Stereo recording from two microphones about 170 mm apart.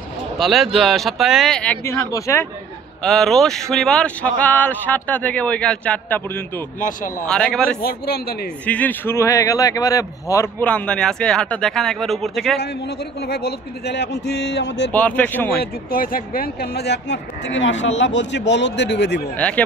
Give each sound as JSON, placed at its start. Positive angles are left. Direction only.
{"t": 0.4, "sound": "speech", "side_deg": 0}
{"t": 3.0, "sound": "speech", "side_deg": 0}
{"t": 6.8, "sound": "speech", "side_deg": 50}
{"t": 7.2, "sound": "speech", "side_deg": 5}
{"t": 7.8, "sound": "a man's voice", "side_deg": 65}
{"t": 8.6, "sound": "speech", "side_deg": 10}
{"t": 13.2, "sound": "speech", "side_deg": 70}
{"t": 14.9, "sound": "speech", "side_deg": 10}
{"t": 15.6, "sound": "speech", "side_deg": 60}
{"t": 19.3, "sound": "speech", "side_deg": 10}